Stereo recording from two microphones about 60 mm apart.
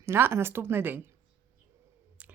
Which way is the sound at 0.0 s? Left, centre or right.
Right.